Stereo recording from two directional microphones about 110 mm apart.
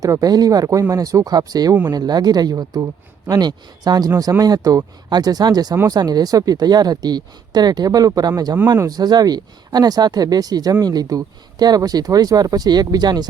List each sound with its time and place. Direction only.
0.0 s speech: 35° right (ahead or behind)